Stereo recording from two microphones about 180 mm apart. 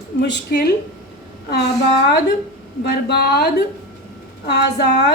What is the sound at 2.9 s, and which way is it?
A woman's voice, 65° left (ahead or behind).